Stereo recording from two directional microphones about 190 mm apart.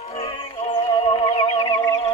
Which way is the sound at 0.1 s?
30° left (ahead or behind).